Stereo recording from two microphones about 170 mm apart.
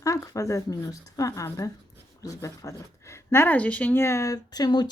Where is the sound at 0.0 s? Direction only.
20° left (ahead or behind).